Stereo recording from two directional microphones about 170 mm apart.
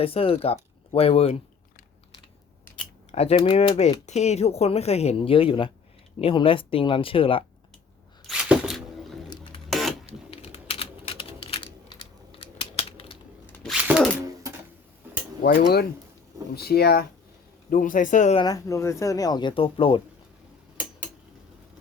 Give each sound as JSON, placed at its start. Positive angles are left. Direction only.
{"t": 0.0, "sound": "speech", "side_deg": 35}
{"t": 3.1, "sound": "speech", "side_deg": 40}
{"t": 4.0, "sound": "speech", "side_deg": 40}
{"t": 8.3, "sound": "a sound", "side_deg": -5}
{"t": 9.3, "sound": "printer", "side_deg": 30}
{"t": 9.6, "sound": "printer", "side_deg": 0}
{"t": 10.3, "sound": "typing", "side_deg": 35}
{"t": 13.5, "sound": "a sound", "side_deg": 5}
{"t": 15.4, "sound": "speech", "side_deg": 70}
{"t": 17.7, "sound": "a man's voice", "side_deg": 55}
{"t": 18.3, "sound": "speech", "side_deg": 20}